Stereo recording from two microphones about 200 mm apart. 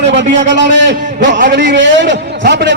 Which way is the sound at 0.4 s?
65° right (ahead or behind).